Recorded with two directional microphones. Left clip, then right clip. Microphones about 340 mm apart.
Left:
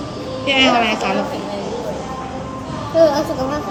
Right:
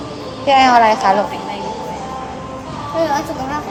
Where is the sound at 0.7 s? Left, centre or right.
Centre.